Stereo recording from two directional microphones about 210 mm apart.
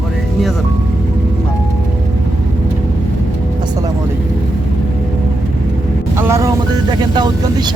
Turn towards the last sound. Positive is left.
turn(degrees=-20)  # may be behind; listen again after turning